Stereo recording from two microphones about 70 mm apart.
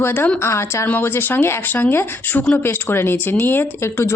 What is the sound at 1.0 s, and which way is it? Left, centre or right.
Speech, left.